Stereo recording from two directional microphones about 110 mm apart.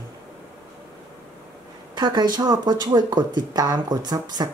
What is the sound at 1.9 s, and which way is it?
Speech, 40° right (ahead or behind).